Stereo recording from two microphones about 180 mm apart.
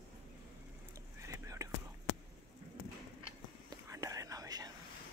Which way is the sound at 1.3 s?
15° right (ahead or behind).